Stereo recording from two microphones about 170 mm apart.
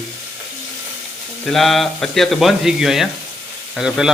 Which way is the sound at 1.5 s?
Centre (ahead or behind).